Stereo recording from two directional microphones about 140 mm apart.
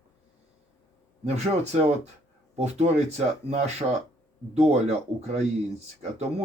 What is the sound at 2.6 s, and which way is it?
Speech, 50° right (ahead or behind).